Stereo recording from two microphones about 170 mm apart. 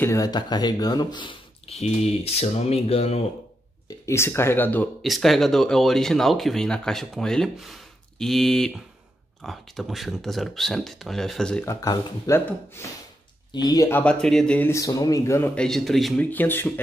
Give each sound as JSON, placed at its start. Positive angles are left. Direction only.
{"t": 0.0, "sound": "speech", "side_deg": 20}
{"t": 4.0, "sound": "speech", "side_deg": 15}
{"t": 5.0, "sound": "speech", "side_deg": 0}
{"t": 11.6, "sound": "speech", "side_deg": 20}